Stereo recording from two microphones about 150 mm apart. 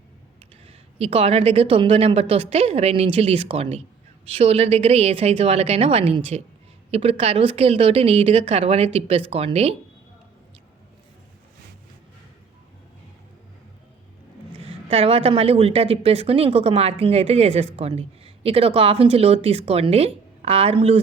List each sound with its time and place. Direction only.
0.7 s a woman's voice: 45° right (ahead or behind)
14.8 s a woman's voice: 40° right (ahead or behind)